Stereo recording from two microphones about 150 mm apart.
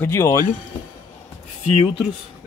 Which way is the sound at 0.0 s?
20° left (ahead or behind).